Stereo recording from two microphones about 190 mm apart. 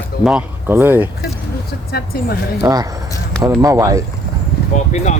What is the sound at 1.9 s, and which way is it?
Speech, 55° left (ahead or behind).